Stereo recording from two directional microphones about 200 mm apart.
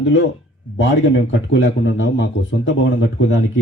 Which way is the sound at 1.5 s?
70° left (ahead or behind).